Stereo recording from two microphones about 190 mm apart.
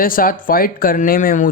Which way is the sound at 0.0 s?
50° left (ahead or behind).